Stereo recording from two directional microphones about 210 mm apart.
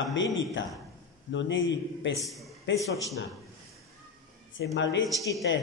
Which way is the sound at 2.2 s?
Centre (ahead or behind).